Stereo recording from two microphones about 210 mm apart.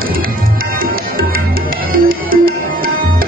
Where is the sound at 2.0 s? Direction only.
45° right (ahead or behind).